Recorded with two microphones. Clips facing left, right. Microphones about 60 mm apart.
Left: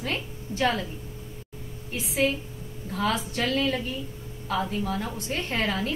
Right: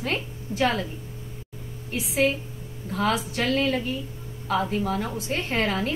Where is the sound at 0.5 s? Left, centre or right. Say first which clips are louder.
Right 3 dB; right.